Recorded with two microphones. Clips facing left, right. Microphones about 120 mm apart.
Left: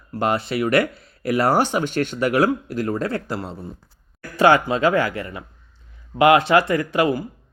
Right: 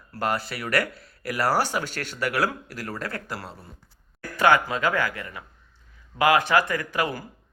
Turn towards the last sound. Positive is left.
turn(degrees=25)  # may be behind; listen again after turning